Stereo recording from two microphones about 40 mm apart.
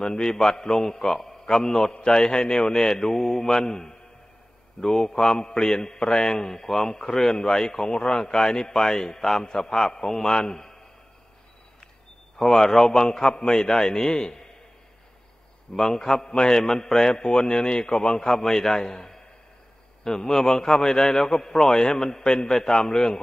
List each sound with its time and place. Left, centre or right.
0.0 s a man's voice: centre
12.4 s a man's voice: centre
15.7 s a man's voice: centre